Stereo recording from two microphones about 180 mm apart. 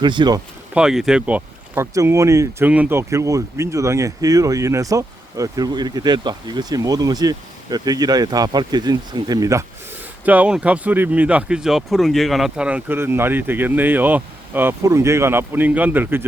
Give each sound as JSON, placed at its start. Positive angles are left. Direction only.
{"t": 0.0, "sound": "speech", "side_deg": -25}
{"t": 0.7, "sound": "speech", "side_deg": -5}